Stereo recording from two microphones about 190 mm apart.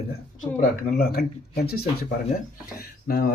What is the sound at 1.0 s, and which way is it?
Speech, 55° left (ahead or behind).